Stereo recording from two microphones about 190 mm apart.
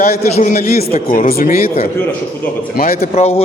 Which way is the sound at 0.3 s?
35° left (ahead or behind).